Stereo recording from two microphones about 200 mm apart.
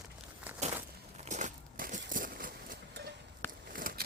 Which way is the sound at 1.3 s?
35° right (ahead or behind).